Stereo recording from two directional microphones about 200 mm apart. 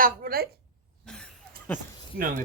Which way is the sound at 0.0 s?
45° right (ahead or behind).